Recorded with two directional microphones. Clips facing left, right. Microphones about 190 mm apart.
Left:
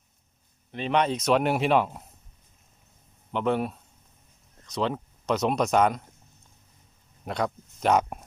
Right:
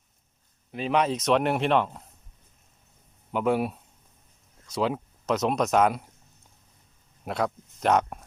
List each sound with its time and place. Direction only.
0.7 s speech: 5° right (ahead or behind)
3.3 s speech: 10° right (ahead or behind)
7.3 s speech: centre (ahead or behind)